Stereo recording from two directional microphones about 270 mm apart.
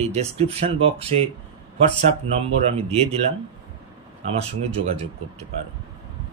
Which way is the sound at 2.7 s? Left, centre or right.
Right.